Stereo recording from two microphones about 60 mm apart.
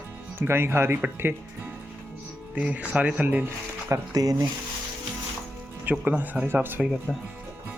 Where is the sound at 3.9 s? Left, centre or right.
Right.